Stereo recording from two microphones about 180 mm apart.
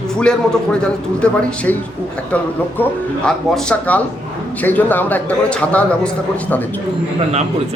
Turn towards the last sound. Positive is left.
turn(degrees=5)  # may be behind; listen again after turning